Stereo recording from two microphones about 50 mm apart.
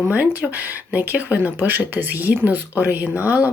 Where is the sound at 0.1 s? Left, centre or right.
Right.